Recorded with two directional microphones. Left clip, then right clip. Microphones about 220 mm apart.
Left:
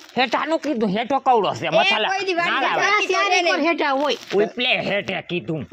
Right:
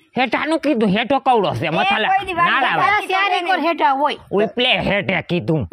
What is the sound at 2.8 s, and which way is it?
A woman's voice, 30° right (ahead or behind).